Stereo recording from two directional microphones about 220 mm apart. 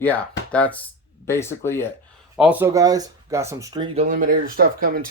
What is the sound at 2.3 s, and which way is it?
Speech, 5° right (ahead or behind).